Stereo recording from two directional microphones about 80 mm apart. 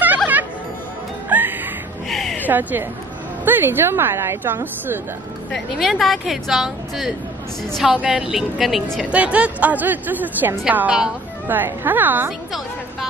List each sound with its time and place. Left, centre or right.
1.3 s music: right
2.0 s a sound: centre
2.4 s a woman's voice: right
5.5 s speech: centre
9.1 s a woman's voice: centre